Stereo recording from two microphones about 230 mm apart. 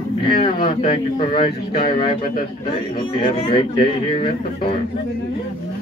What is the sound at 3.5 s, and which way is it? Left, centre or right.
Speech, left.